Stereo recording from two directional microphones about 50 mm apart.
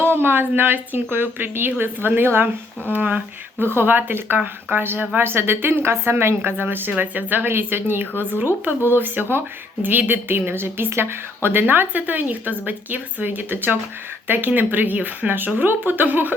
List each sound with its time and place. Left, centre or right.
0.0 s a woman's voice: right
2.9 s a woman's voice: right